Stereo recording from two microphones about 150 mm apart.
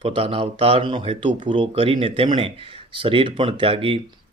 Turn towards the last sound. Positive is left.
turn(degrees=-40)  # may be behind; listen again after turning